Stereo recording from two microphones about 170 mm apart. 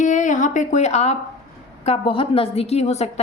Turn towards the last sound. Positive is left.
turn(degrees=40)  # may be behind; listen again after turning